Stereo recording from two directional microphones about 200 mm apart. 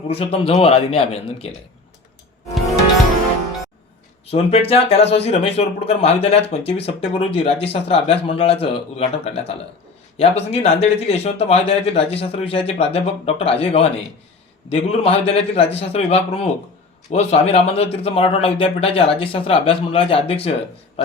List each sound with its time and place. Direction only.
0.1 s speech: 30° left (ahead or behind)
4.3 s speech: 30° left (ahead or behind)